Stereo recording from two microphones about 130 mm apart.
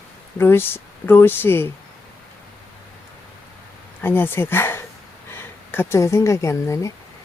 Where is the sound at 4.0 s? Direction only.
15° left (ahead or behind).